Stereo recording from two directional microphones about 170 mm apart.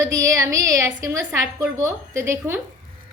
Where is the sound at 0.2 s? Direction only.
15° right (ahead or behind).